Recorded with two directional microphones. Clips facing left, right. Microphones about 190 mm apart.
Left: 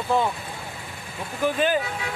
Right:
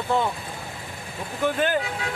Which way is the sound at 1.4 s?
15° left (ahead or behind).